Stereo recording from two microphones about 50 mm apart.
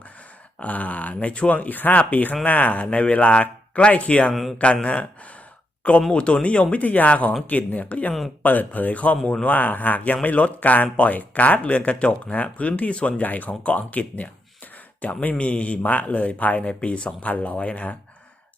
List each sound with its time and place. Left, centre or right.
0.6 s speech: left
6.1 s speech: left
15.4 s speech: left